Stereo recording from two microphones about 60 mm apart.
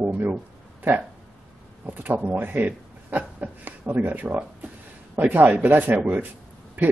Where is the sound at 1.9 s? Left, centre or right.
Right.